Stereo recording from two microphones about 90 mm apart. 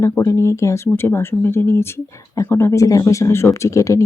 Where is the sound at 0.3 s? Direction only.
35° left (ahead or behind).